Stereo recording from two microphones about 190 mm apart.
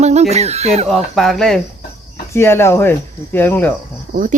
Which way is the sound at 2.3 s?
10° left (ahead or behind).